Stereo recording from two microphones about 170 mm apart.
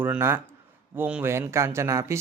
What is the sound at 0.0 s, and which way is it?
Speech, 10° right (ahead or behind).